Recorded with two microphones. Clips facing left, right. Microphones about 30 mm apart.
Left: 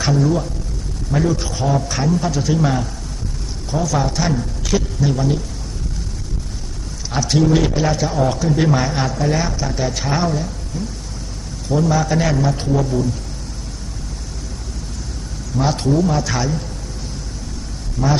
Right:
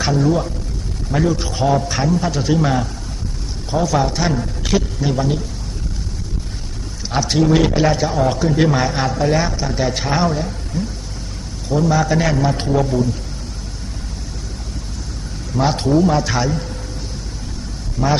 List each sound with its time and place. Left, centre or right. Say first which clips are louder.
0.0 s a man's voice: right 1 dB; centre
1.5 s a man's voice: right 2 dB; right
2.0 s a man's voice: left 1 dB; centre
2.3 s a man's voice: right 1 dB; centre
3.7 s speech: right 2 dB; right
3.9 s a man's voice: even; centre
7.1 s a man's voice: right 1 dB; centre
11.7 s a man's voice: right 1 dB; centre
12.5 s a man's voice: right 1 dB; right
12.8 s a man's voice: right 2 dB; centre
15.5 s a man's voice: right 2 dB; right
18.0 s a man's voice: right 1 dB; centre